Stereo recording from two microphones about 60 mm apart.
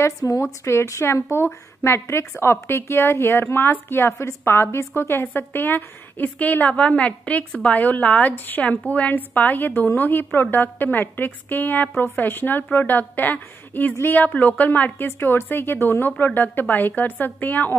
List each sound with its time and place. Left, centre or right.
0.0 s a woman's voice: left